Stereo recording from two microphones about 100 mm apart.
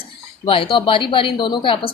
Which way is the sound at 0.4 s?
65° left (ahead or behind).